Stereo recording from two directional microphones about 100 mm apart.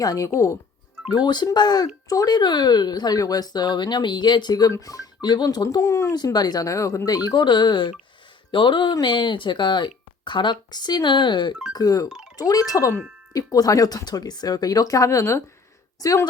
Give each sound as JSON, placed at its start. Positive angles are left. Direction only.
{"t": 0.0, "sound": "speech", "side_deg": 35}
{"t": 1.1, "sound": "speech", "side_deg": 45}
{"t": 6.1, "sound": "speech", "side_deg": 45}
{"t": 11.7, "sound": "a woman's voice", "side_deg": 40}